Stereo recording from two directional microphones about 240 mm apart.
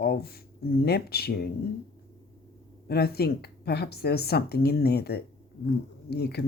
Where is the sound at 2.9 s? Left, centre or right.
Left.